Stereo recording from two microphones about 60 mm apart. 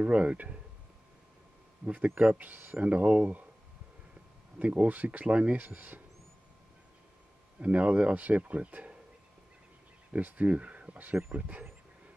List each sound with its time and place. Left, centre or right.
0.0 s speech: right
2.1 s speech: right
4.6 s speech: right
7.6 s speech: right
10.1 s speech: right